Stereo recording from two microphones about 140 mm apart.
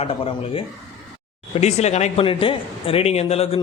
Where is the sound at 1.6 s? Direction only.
50° left (ahead or behind).